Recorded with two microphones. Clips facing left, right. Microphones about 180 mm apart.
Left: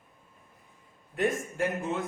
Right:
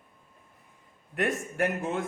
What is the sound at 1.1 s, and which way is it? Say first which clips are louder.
Speech: left 1 dB; 65° right (ahead or behind).